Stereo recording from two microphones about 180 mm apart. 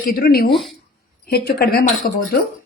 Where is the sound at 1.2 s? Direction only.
60° left (ahead or behind).